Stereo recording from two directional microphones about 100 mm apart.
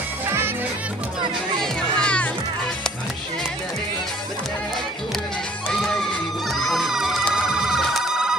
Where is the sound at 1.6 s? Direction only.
10° left (ahead or behind).